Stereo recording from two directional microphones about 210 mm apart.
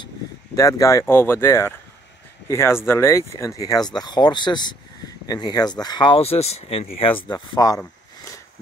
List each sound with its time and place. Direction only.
0.6 s speech: 15° left (ahead or behind)